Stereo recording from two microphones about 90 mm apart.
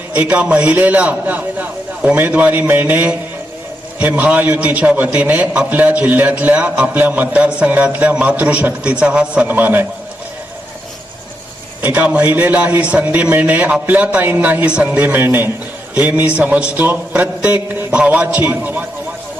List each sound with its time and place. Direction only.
0.1 s a man's voice: 20° right (ahead or behind)
11.8 s a man's voice: 20° right (ahead or behind)